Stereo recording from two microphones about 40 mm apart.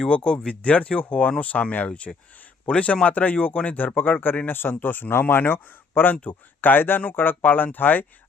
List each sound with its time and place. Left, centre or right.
0.1 s speech: left
1.9 s speech: left
4.4 s speech: left